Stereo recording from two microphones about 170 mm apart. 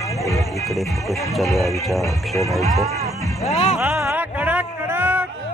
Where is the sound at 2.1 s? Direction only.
20° left (ahead or behind).